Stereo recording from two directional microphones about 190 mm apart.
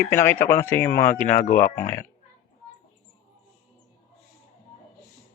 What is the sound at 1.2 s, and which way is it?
Speech, 45° left (ahead or behind).